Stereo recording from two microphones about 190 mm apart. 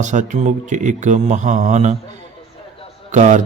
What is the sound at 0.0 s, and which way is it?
Speech, 40° right (ahead or behind).